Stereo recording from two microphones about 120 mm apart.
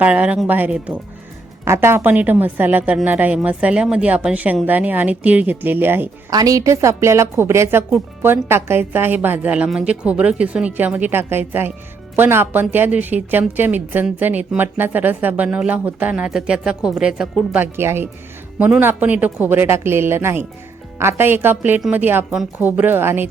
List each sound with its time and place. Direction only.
0.0 s speech: 10° right (ahead or behind)
6.3 s a woman's voice: 30° right (ahead or behind); by 17.2 s 5° right (ahead or behind)
17.5 s a woman's voice: 15° right (ahead or behind)